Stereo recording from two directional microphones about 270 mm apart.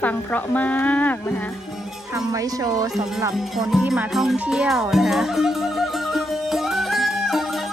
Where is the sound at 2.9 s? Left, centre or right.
Centre.